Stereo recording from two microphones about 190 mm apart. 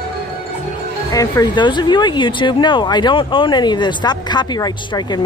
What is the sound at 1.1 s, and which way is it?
Speech, 20° left (ahead or behind).